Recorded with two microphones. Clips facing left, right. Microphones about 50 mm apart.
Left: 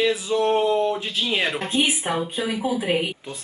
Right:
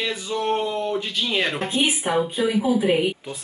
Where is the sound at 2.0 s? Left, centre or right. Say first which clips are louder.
Right 3 dB; centre.